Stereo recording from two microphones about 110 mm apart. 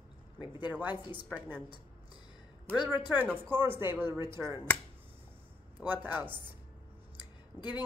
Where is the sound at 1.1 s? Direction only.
15° right (ahead or behind).